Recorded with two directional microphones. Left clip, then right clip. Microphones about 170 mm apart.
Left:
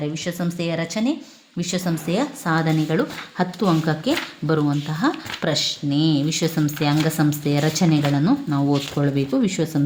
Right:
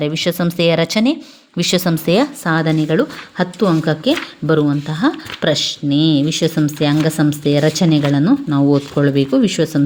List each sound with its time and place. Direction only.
0.0 s a woman's voice: 50° right (ahead or behind)
2.8 s speech: 25° right (ahead or behind)